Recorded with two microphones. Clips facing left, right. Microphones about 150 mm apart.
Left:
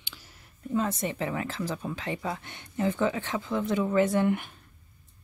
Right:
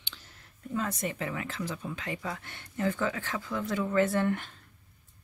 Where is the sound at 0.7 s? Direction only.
25° left (ahead or behind).